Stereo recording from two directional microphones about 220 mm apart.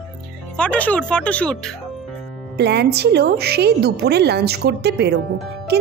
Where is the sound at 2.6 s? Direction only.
50° right (ahead or behind).